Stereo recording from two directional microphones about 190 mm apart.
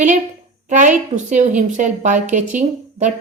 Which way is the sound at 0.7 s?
40° right (ahead or behind).